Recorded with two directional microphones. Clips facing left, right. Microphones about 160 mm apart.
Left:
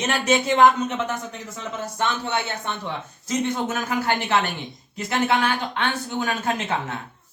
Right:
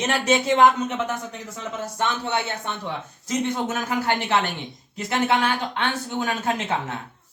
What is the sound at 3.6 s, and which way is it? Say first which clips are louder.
Speech: even; 20° right (ahead or behind).